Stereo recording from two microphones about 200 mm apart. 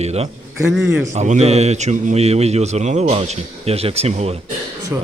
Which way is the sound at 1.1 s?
35° right (ahead or behind).